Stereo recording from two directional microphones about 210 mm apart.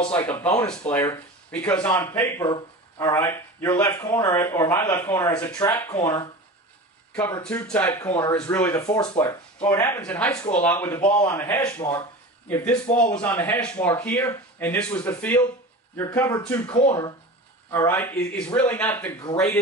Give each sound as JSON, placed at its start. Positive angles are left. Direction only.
{"t": 0.6, "sound": "speech", "side_deg": 10}
{"t": 7.4, "sound": "speech", "side_deg": 5}